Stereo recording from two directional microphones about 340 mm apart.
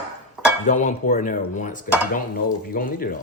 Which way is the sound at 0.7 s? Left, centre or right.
Left.